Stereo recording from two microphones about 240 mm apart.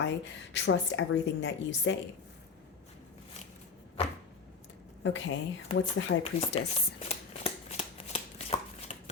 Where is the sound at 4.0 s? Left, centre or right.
Left.